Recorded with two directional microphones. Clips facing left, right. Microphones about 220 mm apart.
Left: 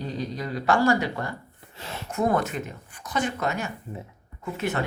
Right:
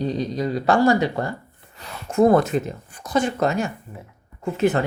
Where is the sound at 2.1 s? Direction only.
30° right (ahead or behind).